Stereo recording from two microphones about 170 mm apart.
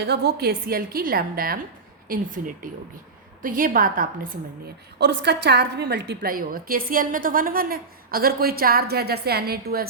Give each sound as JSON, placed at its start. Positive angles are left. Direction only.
{"t": 0.0, "sound": "a woman's voice", "side_deg": -70}
{"t": 4.9, "sound": "a woman's voice", "side_deg": -80}